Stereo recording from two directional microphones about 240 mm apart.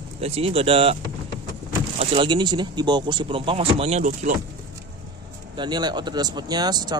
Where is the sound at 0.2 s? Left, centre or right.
Right.